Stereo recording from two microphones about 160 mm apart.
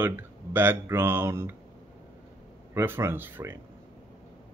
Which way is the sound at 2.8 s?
15° right (ahead or behind).